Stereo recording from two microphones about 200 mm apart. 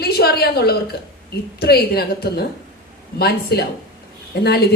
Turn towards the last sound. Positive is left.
turn(degrees=50)  # may be behind; listen again after turning